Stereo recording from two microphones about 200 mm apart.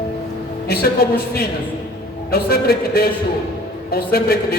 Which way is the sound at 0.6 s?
50° left (ahead or behind).